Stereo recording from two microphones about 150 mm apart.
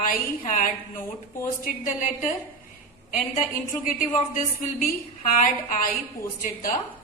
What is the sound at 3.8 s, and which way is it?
A woman's voice, 65° left (ahead or behind).